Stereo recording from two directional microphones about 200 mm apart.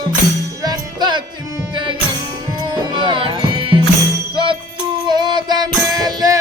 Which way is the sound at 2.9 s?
25° right (ahead or behind).